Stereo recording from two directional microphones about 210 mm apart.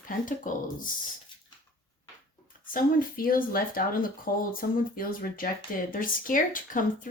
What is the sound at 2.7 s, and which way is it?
Speech, 40° left (ahead or behind).